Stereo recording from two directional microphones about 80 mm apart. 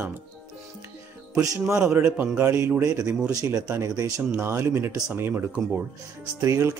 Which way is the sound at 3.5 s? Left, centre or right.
Right.